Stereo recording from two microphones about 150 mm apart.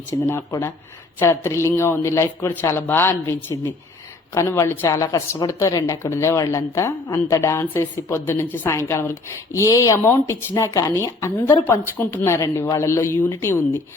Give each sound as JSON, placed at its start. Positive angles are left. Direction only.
{"t": 0.3, "sound": "a woman's voice", "side_deg": 15}